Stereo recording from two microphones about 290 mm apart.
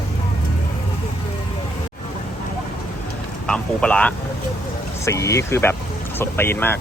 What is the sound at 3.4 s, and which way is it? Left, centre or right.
Speech, centre.